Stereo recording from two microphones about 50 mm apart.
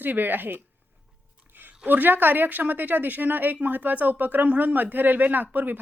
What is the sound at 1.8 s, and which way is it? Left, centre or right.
Speech, right.